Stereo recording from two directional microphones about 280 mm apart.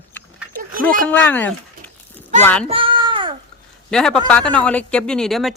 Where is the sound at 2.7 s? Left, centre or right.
Centre.